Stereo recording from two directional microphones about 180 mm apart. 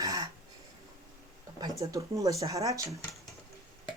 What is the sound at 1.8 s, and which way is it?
Speech, 20° right (ahead or behind).